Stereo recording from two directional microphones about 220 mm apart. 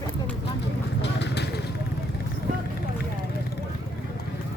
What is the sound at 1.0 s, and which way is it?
Vehicle, 50° left (ahead or behind).